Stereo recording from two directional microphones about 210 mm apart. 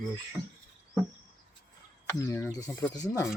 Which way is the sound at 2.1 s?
15° left (ahead or behind).